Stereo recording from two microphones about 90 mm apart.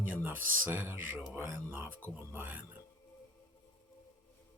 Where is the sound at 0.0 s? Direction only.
20° right (ahead or behind).